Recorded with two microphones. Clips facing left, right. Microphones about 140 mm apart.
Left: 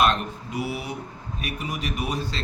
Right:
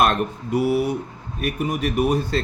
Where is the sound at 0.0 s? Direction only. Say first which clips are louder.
Right 3 dB; 55° right (ahead or behind).